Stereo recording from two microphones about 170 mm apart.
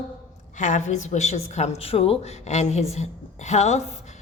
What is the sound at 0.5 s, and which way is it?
Speech, 45° left (ahead or behind).